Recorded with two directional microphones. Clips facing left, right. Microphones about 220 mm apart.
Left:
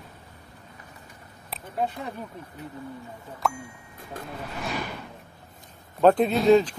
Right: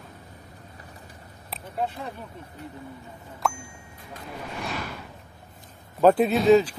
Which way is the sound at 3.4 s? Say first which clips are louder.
Even; centre (ahead or behind).